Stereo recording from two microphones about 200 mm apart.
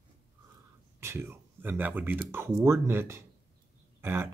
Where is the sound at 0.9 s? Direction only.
15° right (ahead or behind).